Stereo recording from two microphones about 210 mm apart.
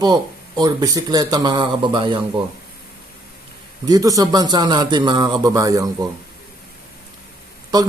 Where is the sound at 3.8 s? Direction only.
15° right (ahead or behind).